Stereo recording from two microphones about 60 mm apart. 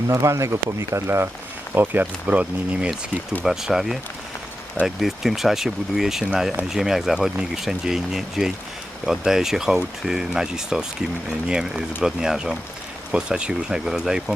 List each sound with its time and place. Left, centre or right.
0.1 s speech: right
1.7 s speech: right
3.4 s speech: centre
4.9 s speech: centre